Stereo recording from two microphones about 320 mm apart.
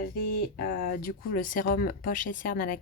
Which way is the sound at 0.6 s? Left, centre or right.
Left.